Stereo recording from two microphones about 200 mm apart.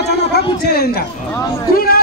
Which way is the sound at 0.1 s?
55° left (ahead or behind).